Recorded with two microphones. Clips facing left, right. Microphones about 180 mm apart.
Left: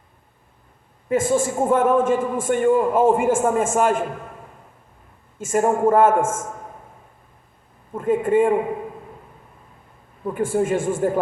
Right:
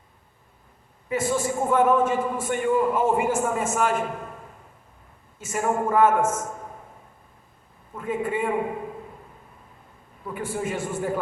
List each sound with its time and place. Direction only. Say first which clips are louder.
1.0 s a man's voice: left 5 dB; 50° left (ahead or behind)
5.4 s a man's voice: left 7 dB; 50° left (ahead or behind)
7.9 s a man's voice: left 9 dB; 50° left (ahead or behind)
10.3 s a man's voice: left 8 dB; 50° left (ahead or behind)